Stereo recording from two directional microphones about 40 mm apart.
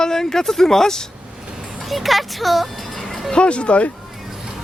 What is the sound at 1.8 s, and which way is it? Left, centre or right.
Music, centre.